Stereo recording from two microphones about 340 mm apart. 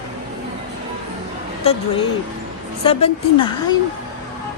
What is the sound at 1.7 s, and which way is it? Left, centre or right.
Speech, centre.